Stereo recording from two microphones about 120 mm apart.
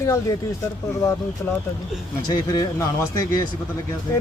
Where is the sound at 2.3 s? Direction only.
30° left (ahead or behind).